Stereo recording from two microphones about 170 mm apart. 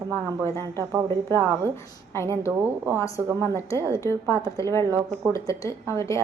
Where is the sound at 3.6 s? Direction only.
15° left (ahead or behind).